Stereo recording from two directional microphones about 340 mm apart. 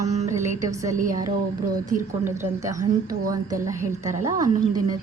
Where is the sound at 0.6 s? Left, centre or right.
Centre.